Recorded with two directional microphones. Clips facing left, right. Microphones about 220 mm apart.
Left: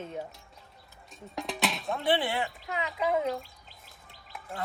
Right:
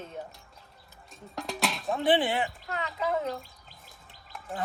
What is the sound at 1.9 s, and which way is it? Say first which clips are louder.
Speech: right 4 dB; 20° right (ahead or behind).